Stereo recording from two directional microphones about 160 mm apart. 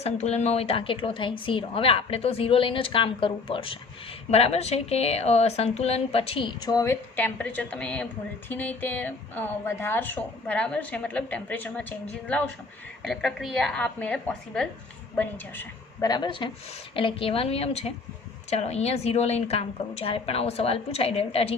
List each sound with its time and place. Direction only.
0.0 s a woman's voice: 45° left (ahead or behind); by 11.9 s 10° left (ahead or behind)
13.0 s a woman's voice: centre (ahead or behind)
16.0 s a woman's voice: 25° left (ahead or behind)